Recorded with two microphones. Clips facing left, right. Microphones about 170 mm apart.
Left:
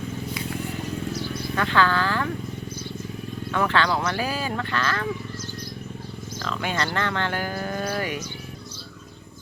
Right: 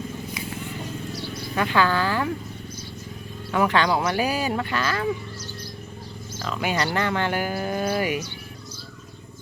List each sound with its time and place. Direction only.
1.5 s speech: 15° right (ahead or behind)
3.5 s speech: 15° right (ahead or behind)
6.4 s speech: 10° right (ahead or behind)